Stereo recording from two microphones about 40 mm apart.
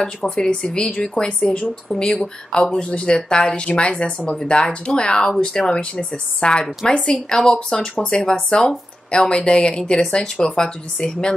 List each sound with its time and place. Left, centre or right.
0.0 s speech: centre
6.8 s speech: centre